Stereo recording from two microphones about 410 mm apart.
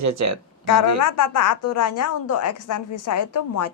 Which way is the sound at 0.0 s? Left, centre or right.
Right.